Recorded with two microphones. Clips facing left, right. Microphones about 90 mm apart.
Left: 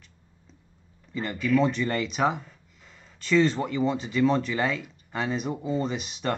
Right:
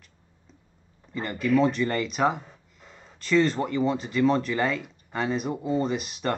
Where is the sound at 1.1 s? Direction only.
Centre (ahead or behind).